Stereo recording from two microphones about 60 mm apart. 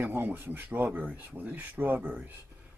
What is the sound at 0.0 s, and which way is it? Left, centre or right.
Speech, right.